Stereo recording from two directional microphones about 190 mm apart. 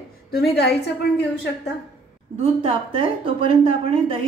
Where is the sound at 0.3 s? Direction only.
55° left (ahead or behind).